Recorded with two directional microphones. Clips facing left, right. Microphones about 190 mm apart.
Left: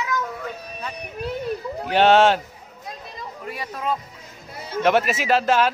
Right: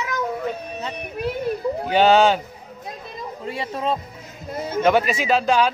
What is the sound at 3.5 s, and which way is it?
Speech, 25° right (ahead or behind).